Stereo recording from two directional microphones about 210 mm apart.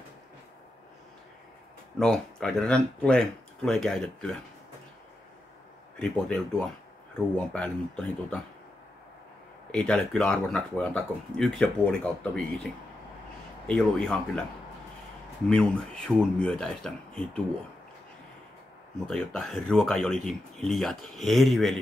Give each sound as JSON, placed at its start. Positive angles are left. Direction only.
{"t": 2.0, "sound": "speech", "side_deg": 5}
{"t": 5.9, "sound": "speech", "side_deg": 5}
{"t": 9.7, "sound": "speech", "side_deg": 5}
{"t": 13.7, "sound": "speech", "side_deg": 5}
{"t": 15.5, "sound": "speech", "side_deg": 5}
{"t": 19.0, "sound": "speech", "side_deg": 5}